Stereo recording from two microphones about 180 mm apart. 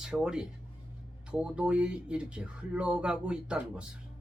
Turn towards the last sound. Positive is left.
turn(degrees=-5)  # may be behind; listen again after turning